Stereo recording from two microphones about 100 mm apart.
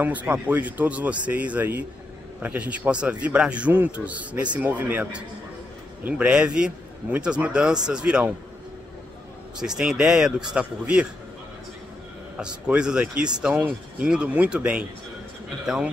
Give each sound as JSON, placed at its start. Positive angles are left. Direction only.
{"t": 0.0, "sound": "speech", "side_deg": -15}
{"t": 9.6, "sound": "speech", "side_deg": -5}
{"t": 12.4, "sound": "speech", "side_deg": -10}